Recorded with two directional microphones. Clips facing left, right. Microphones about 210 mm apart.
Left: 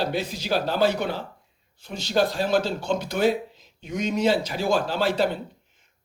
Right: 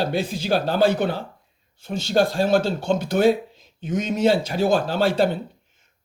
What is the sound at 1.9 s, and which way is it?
Speech, 50° right (ahead or behind).